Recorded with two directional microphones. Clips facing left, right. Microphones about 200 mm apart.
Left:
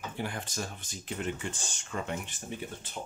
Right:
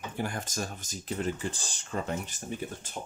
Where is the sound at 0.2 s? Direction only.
45° right (ahead or behind).